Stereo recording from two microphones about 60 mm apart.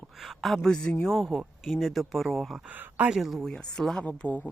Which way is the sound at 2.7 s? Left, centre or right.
Right.